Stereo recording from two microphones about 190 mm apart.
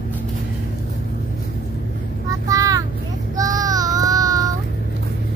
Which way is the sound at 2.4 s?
20° right (ahead or behind).